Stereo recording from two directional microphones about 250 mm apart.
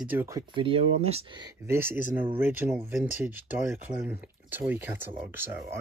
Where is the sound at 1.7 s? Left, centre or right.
Centre.